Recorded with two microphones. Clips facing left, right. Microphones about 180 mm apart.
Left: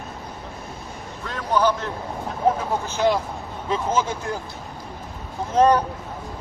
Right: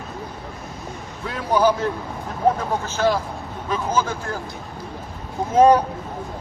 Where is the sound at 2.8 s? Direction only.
15° left (ahead or behind).